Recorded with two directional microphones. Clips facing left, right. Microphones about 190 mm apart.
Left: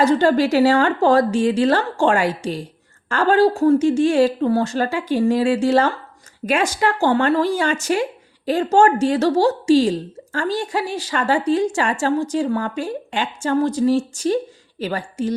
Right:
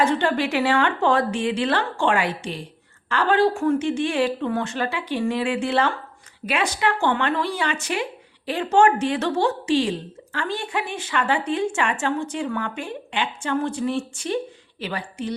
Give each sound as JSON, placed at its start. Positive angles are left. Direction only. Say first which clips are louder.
{"t": 0.0, "sound": "a woman's voice", "louder": "left 6 dB", "side_deg": 40}